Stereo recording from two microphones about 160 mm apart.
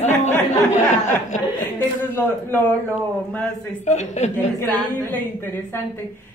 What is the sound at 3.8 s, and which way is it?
Speech, 45° left (ahead or behind).